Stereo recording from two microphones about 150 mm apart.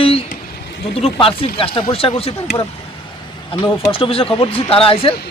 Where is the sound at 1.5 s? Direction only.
35° left (ahead or behind).